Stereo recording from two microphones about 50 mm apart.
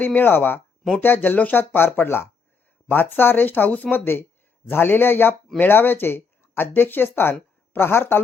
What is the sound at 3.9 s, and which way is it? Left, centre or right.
Speech, left.